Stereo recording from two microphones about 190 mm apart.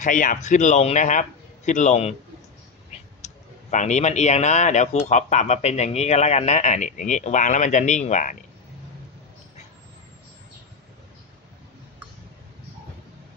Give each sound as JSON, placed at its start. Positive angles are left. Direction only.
{"t": 0.0, "sound": "speech", "side_deg": 45}
{"t": 3.2, "sound": "speech", "side_deg": 40}